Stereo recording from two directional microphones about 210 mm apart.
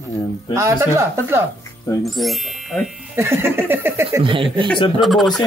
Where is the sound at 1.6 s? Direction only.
15° left (ahead or behind).